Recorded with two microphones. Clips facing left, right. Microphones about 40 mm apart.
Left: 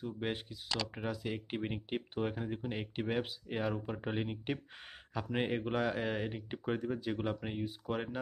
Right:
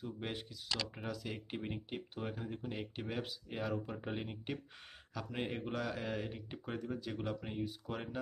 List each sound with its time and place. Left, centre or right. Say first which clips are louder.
0.0 s speech: left 5 dB; centre